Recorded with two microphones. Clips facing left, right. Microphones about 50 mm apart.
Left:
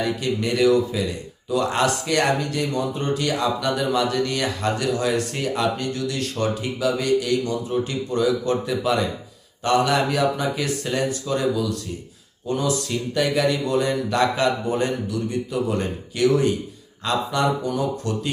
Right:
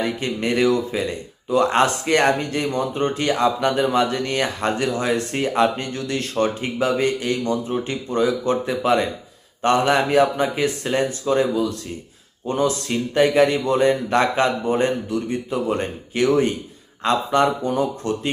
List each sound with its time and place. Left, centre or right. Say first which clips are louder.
0.0 s speech: even; right